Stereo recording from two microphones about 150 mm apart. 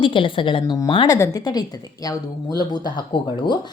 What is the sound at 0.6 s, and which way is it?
A woman's voice, 25° left (ahead or behind).